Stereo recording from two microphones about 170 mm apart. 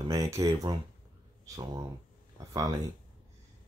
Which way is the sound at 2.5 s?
20° right (ahead or behind).